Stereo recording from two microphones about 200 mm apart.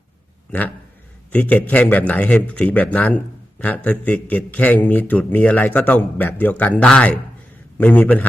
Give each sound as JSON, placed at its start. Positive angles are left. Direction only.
{"t": 1.3, "sound": "a man's voice", "side_deg": 5}